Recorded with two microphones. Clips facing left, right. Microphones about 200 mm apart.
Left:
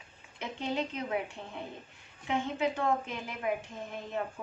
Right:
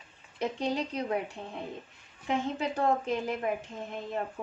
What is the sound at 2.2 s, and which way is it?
Speech, 35° right (ahead or behind).